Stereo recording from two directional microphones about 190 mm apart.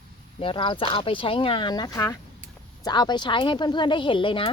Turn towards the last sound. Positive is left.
turn(degrees=25)  # may be behind; listen again after turning